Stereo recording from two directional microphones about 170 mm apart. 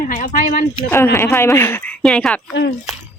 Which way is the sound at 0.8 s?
15° left (ahead or behind).